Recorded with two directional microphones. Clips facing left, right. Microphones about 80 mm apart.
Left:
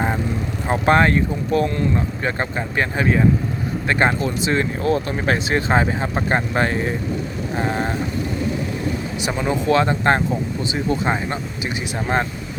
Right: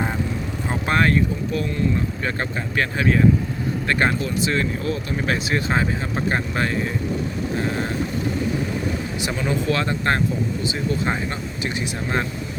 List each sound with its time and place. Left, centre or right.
0.9 s speech: left
2.2 s speech: left
9.2 s speech: left